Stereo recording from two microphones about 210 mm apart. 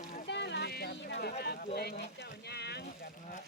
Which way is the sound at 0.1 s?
55° left (ahead or behind).